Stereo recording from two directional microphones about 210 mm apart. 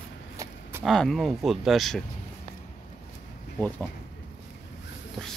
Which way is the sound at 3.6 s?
10° left (ahead or behind).